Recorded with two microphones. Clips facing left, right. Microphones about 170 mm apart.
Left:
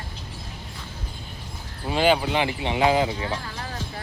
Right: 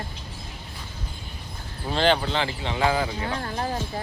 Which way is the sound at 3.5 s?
30° right (ahead or behind).